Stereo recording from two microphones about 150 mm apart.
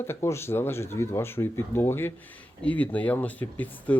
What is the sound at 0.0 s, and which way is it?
Speech, 15° left (ahead or behind).